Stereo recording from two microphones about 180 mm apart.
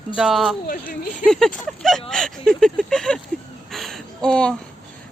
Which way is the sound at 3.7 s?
Centre (ahead or behind).